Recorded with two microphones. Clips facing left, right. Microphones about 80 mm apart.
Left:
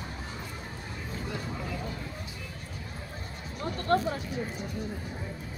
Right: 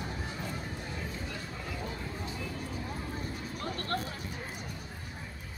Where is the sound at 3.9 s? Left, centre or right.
Left.